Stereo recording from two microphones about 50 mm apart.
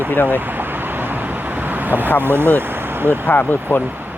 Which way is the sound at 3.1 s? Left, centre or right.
Left.